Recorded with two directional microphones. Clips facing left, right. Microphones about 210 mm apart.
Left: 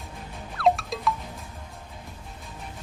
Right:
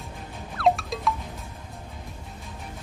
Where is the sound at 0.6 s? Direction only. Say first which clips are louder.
Even; centre (ahead or behind).